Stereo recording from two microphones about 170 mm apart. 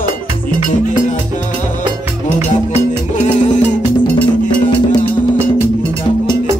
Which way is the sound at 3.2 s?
45° left (ahead or behind).